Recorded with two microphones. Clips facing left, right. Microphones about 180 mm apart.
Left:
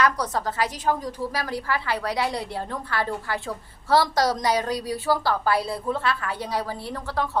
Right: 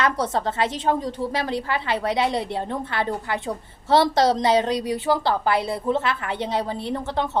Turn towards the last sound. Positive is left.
turn(degrees=-20)  # may be behind; listen again after turning